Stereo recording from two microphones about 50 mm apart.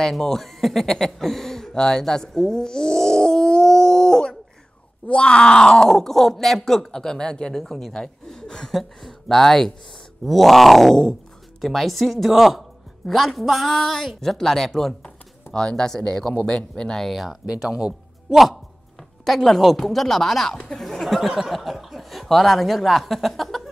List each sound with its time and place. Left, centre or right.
0.0 s speech: centre
17.6 s speech: centre
18.3 s speech: centre